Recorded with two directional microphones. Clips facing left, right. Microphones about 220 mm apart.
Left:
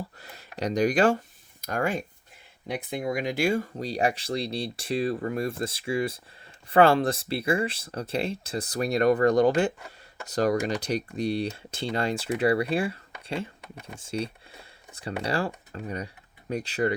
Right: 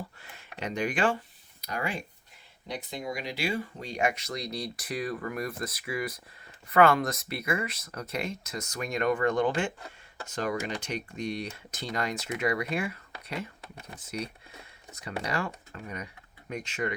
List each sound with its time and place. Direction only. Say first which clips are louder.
0.2 s speech: left 6 dB; 40° left (ahead or behind)